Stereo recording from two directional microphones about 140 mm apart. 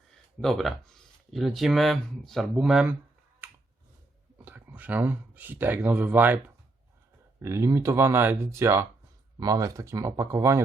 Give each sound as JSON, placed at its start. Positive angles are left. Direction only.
{"t": 0.1, "sound": "speech", "side_deg": 0}
{"t": 3.4, "sound": "a sound", "side_deg": -15}
{"t": 4.4, "sound": "speech", "side_deg": -10}